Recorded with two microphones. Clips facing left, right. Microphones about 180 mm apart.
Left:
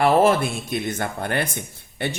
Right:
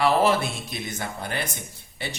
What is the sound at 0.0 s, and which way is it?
Speech, 50° left (ahead or behind).